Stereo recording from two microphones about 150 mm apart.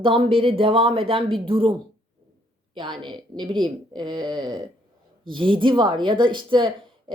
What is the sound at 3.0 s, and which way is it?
Speech, 30° right (ahead or behind).